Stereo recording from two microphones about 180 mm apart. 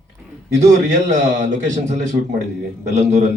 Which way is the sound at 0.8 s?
40° right (ahead or behind).